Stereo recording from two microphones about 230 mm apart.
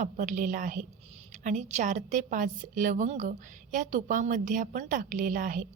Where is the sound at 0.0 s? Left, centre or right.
Right.